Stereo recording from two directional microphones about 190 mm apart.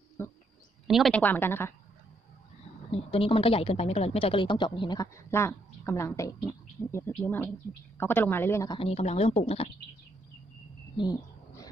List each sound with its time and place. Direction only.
0.2 s speech: 15° left (ahead or behind)
0.8 s a woman's voice: centre (ahead or behind)
1.2 s speech: 10° left (ahead or behind)
2.9 s a woman's voice: 30° left (ahead or behind); by 8.7 s 15° left (ahead or behind)
8.7 s speech: 30° left (ahead or behind)
11.0 s bird: 20° left (ahead or behind)